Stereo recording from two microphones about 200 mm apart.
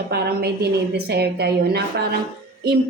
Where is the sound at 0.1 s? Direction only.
50° right (ahead or behind).